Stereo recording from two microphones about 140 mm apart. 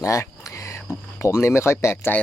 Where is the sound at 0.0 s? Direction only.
20° left (ahead or behind).